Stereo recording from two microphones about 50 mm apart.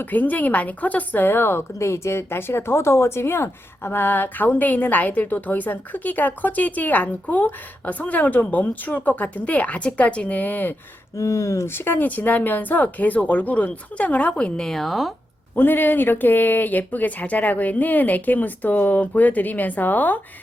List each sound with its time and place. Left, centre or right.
0.0 s a woman's voice: left
11.2 s speech: left
11.7 s a woman's voice: left
14.3 s speech: centre
14.7 s speech: centre
15.5 s a woman's voice: left